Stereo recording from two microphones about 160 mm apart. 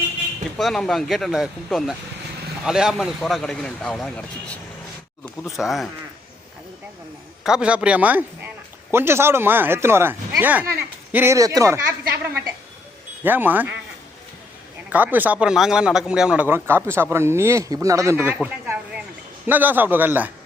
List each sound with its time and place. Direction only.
0.5 s speech: 5° left (ahead or behind)
7.4 s a man's voice: 5° right (ahead or behind)
13.2 s a man's voice: 10° right (ahead or behind)
14.8 s a man's voice: 10° right (ahead or behind)
18.4 s a sound: 10° right (ahead or behind)
19.5 s a man's voice: 10° right (ahead or behind)